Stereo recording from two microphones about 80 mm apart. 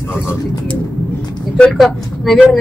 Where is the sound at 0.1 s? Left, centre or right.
Left.